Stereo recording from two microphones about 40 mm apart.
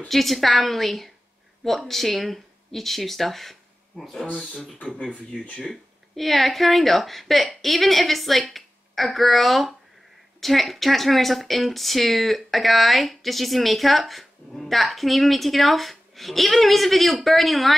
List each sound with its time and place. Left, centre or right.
0.1 s speech: centre
4.3 s speech: centre
4.9 s speech: left
5.7 s a woman's voice: centre